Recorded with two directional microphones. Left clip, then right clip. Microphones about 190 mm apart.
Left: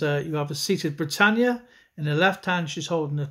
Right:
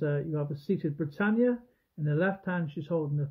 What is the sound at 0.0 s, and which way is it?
Speech, 10° left (ahead or behind).